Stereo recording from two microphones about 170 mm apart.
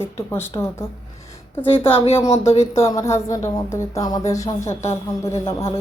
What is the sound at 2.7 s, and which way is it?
A woman's voice, 15° left (ahead or behind).